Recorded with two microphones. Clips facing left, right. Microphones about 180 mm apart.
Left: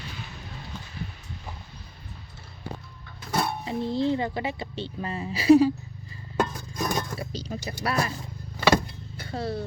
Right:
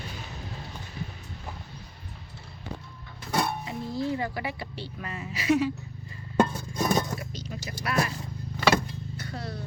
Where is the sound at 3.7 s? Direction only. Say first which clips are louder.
Left 5 dB; 30° left (ahead or behind).